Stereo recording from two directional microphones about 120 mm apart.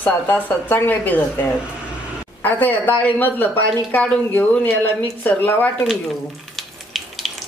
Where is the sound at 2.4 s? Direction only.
15° left (ahead or behind).